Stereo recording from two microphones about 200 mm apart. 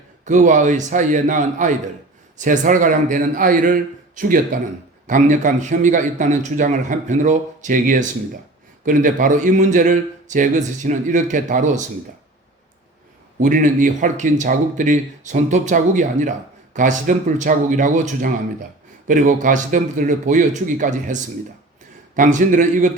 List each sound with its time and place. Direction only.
0.3 s a man's voice: 40° right (ahead or behind)
13.4 s a man's voice: 40° right (ahead or behind)